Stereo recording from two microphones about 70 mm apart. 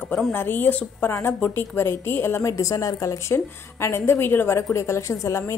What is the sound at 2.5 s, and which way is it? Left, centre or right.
A woman's voice, left.